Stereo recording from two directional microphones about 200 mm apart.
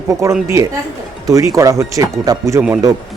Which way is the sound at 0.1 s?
15° right (ahead or behind).